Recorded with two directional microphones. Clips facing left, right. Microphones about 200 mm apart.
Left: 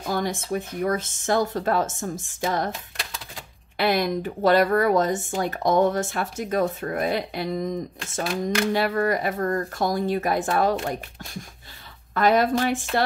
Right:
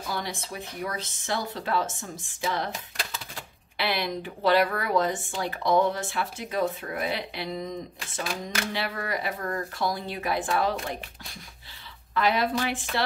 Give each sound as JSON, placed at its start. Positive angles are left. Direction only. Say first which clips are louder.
{"t": 0.1, "sound": "speech", "louder": "left 9 dB", "side_deg": 45}
{"t": 2.7, "sound": "typewriter", "louder": "even", "side_deg": 0}
{"t": 3.7, "sound": "speech", "louder": "left 7 dB", "side_deg": 45}
{"t": 8.7, "sound": "speech", "louder": "left 9 dB", "side_deg": 45}
{"t": 12.1, "sound": "speech", "louder": "left 5 dB", "side_deg": 45}